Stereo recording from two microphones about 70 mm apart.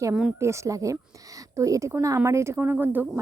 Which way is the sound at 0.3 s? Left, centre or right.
Right.